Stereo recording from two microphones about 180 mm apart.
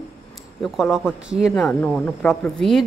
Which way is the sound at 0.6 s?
Centre (ahead or behind).